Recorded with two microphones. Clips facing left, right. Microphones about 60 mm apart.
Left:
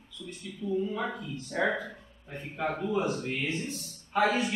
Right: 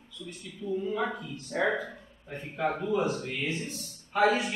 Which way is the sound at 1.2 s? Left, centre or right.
Centre.